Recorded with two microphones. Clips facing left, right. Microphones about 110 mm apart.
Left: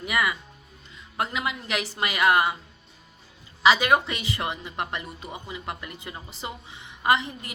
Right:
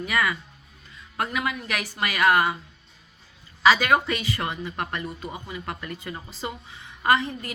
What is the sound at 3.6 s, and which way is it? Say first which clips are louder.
Speech: even; 20° left (ahead or behind).